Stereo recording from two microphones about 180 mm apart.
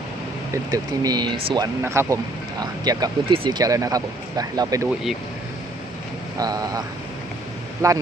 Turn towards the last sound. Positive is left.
turn(degrees=-15)  # may be behind; listen again after turning